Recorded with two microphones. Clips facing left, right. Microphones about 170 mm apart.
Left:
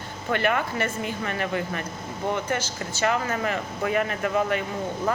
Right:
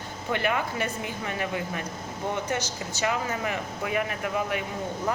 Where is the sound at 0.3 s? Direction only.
10° right (ahead or behind).